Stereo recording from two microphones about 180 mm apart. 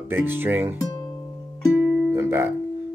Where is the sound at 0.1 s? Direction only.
10° right (ahead or behind).